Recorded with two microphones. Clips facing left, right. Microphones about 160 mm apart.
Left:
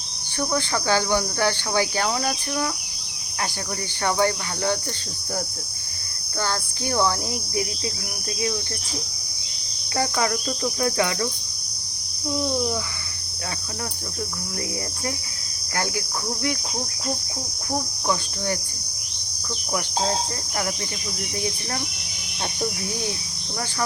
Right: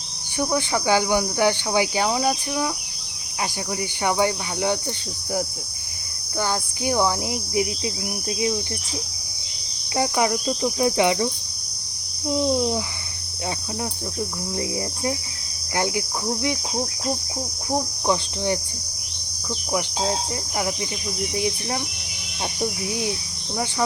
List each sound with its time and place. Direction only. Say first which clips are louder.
0.3 s cricket: right 2 dB; 15° right (ahead or behind)
4.0 s cricket: even; 15° right (ahead or behind)
6.8 s cricket: right 1 dB; 15° right (ahead or behind)
10.0 s cricket: right 2 dB; 15° right (ahead or behind)
12.4 s speech: right 4 dB; 25° right (ahead or behind)
15.8 s speech: right 3 dB; 20° right (ahead or behind)
17.7 s speech: right 3 dB; 20° right (ahead or behind)